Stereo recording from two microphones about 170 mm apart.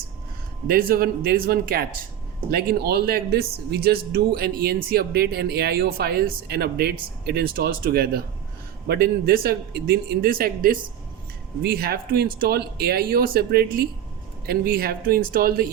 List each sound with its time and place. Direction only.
0.7 s a man's voice: 60° right (ahead or behind)